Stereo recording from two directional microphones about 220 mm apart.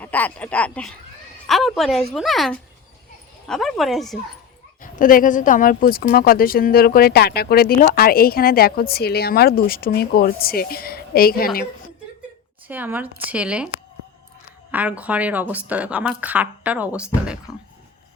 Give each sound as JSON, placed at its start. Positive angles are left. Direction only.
{"t": 0.0, "sound": "speech", "side_deg": 5}
{"t": 4.8, "sound": "a woman's voice", "side_deg": 40}
{"t": 12.6, "sound": "speech", "side_deg": -10}
{"t": 14.7, "sound": "speech", "side_deg": -5}